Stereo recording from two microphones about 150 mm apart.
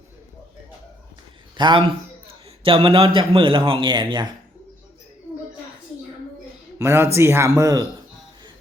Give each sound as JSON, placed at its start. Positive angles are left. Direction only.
{"t": 1.5, "sound": "a man's voice", "side_deg": -30}
{"t": 6.7, "sound": "speech", "side_deg": -15}